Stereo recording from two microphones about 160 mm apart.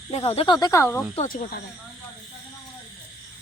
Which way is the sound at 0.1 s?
40° left (ahead or behind).